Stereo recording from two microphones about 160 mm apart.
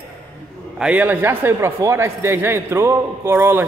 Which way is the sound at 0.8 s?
10° right (ahead or behind).